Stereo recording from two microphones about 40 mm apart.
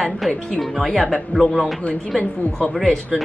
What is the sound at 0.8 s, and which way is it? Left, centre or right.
Speech, centre.